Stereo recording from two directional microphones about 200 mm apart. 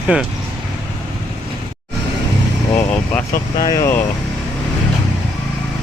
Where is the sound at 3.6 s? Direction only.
15° left (ahead or behind).